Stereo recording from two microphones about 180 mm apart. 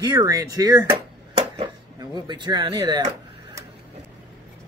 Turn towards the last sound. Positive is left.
turn(degrees=-25)  # may be behind; listen again after turning